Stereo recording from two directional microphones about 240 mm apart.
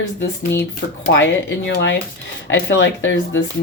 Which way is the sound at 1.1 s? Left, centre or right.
Left.